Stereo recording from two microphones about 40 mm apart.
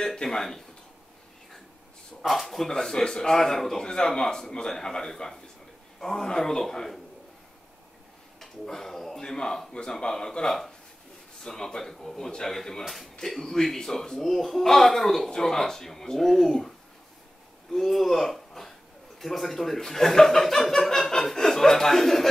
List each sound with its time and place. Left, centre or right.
0.0 s speech: centre
2.2 s speech: centre
2.7 s a man's voice: centre
8.4 s speech: centre
12.8 s speech: centre
17.7 s speech: centre